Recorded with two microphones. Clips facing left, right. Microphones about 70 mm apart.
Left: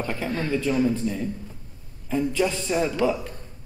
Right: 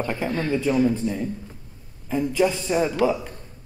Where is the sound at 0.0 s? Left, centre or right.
Centre.